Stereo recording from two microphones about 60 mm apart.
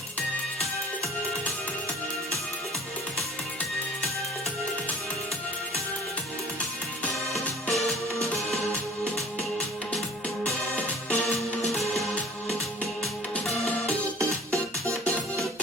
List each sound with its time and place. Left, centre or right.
7.7 s music: centre
10.8 s music: left
11.7 s music: centre